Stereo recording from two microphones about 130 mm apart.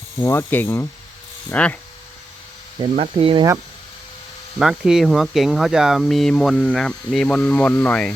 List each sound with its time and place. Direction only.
0.2 s speech: 20° left (ahead or behind)
3.0 s speech: 45° right (ahead or behind)
4.6 s speech: 5° right (ahead or behind)